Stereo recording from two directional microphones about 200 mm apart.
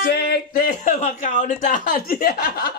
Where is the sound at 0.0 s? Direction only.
55° left (ahead or behind).